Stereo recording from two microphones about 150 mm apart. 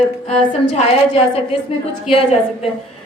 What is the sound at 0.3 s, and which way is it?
A woman's voice, 40° left (ahead or behind).